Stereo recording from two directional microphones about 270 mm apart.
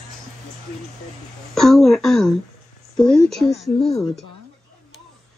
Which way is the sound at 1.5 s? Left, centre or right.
Centre.